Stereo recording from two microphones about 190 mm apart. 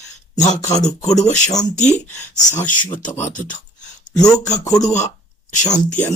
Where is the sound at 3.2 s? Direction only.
40° left (ahead or behind).